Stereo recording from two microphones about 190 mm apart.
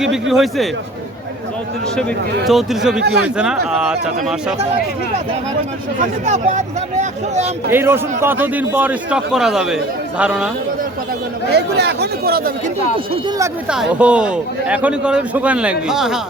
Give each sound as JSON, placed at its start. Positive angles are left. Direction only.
{"t": 0.0, "sound": "a man's voice", "side_deg": 0}
{"t": 2.5, "sound": "a man's voice", "side_deg": 0}
{"t": 6.0, "sound": "speech", "side_deg": -40}
{"t": 7.7, "sound": "a man's voice", "side_deg": -10}
{"t": 11.4, "sound": "speech", "side_deg": -60}
{"t": 13.7, "sound": "a man's voice", "side_deg": -5}